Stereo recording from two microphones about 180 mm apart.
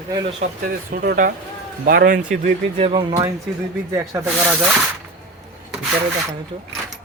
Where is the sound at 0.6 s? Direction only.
50° right (ahead or behind).